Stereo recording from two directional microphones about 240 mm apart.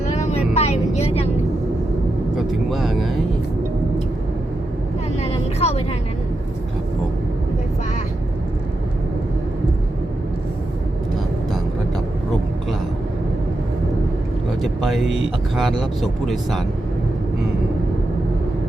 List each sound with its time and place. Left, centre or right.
0.2 s vehicle: left
2.3 s speech: centre
5.2 s vehicle: left
14.6 s vehicle: centre
15.5 s speech: centre